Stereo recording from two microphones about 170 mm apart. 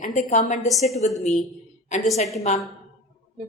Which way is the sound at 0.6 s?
Centre (ahead or behind).